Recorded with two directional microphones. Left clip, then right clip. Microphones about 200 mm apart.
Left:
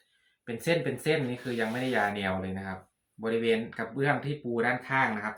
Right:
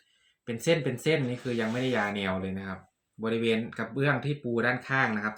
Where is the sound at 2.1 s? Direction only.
20° right (ahead or behind).